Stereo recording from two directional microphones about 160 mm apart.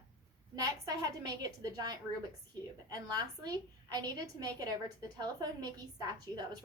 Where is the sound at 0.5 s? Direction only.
20° right (ahead or behind).